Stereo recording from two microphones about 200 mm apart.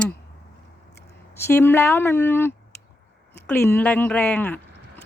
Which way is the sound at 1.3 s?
10° left (ahead or behind).